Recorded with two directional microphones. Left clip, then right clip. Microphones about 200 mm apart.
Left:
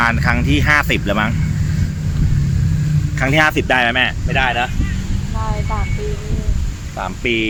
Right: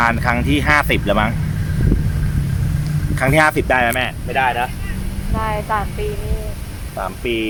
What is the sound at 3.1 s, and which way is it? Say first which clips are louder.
Speech: even; centre (ahead or behind).